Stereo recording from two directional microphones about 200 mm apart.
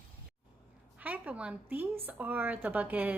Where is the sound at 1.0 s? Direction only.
10° right (ahead or behind).